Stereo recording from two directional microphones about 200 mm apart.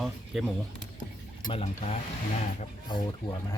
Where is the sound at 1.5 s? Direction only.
30° left (ahead or behind).